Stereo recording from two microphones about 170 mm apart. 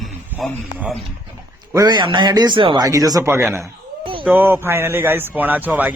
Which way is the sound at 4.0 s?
30° right (ahead or behind).